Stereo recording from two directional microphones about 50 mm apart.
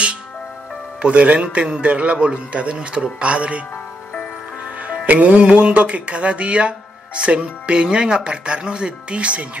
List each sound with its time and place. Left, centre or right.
1.0 s a man's voice: right
4.8 s a man's voice: right